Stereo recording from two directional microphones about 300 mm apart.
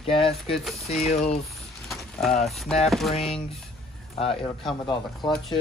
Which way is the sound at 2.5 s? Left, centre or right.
Centre.